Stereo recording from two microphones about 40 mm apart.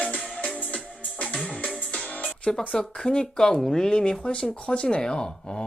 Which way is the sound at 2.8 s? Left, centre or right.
Centre.